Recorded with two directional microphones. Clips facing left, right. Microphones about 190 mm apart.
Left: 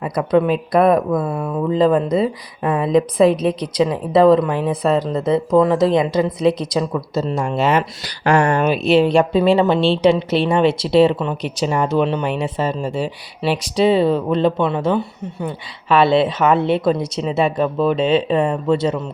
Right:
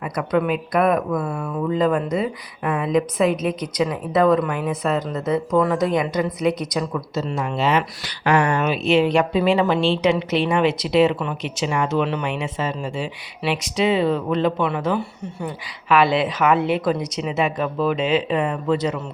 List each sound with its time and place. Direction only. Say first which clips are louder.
0.0 s a woman's voice: left 5 dB; 30° left (ahead or behind)
11.4 s speech: left 3 dB; 40° left (ahead or behind)